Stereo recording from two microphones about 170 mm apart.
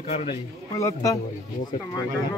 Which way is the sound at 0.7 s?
20° left (ahead or behind).